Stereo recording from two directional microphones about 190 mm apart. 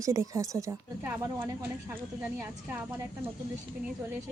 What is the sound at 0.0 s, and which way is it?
Speech, 15° right (ahead or behind).